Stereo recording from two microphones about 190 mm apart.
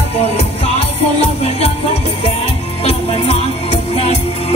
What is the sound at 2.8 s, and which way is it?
Music, 30° left (ahead or behind).